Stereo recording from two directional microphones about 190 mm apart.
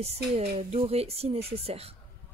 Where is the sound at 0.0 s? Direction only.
35° right (ahead or behind).